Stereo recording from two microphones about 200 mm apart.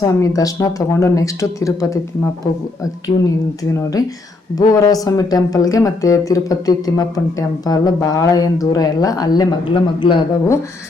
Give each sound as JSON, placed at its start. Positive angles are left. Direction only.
{"t": 0.0, "sound": "speech", "side_deg": 15}
{"t": 3.2, "sound": "speech", "side_deg": 15}